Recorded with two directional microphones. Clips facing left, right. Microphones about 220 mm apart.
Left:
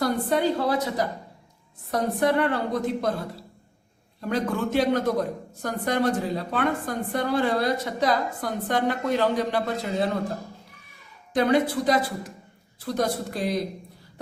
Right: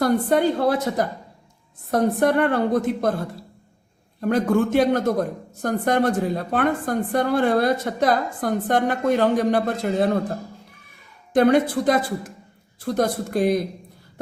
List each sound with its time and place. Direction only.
0.0 s a woman's voice: 50° right (ahead or behind)
11.3 s a woman's voice: 50° right (ahead or behind)